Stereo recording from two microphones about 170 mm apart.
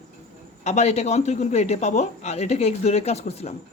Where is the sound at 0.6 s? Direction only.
40° left (ahead or behind).